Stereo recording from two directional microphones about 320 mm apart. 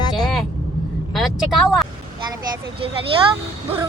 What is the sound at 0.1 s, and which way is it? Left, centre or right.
Vehicle, centre.